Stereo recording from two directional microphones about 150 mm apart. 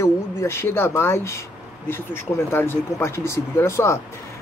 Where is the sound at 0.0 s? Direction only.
15° left (ahead or behind).